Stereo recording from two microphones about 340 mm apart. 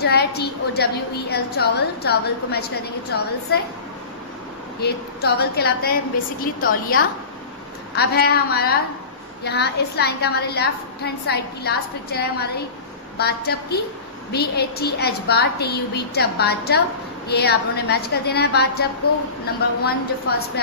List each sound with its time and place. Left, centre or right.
0.0 s a woman's voice: left
4.8 s a woman's voice: left